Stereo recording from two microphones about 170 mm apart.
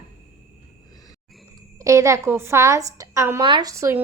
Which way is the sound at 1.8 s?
20° right (ahead or behind).